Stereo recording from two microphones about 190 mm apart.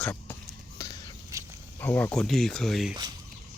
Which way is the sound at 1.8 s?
10° left (ahead or behind).